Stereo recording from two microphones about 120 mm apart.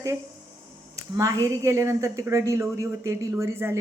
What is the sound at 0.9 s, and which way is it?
A woman's voice, 25° right (ahead or behind).